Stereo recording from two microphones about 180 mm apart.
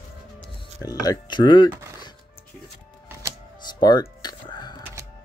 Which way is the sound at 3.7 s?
25° left (ahead or behind).